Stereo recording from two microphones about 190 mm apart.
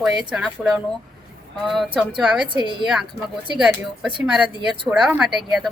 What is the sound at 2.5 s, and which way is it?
Speech, 25° right (ahead or behind).